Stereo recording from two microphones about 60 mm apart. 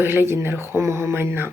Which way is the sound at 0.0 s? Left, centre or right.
Right.